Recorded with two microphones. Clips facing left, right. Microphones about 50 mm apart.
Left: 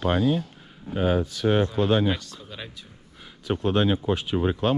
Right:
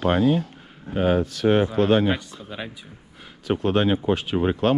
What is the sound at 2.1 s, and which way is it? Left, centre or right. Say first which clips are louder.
Speech: right 4 dB; centre.